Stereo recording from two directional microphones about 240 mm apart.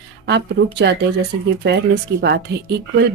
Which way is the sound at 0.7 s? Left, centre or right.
Right.